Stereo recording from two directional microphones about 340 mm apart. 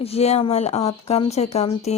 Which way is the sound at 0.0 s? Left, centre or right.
Centre.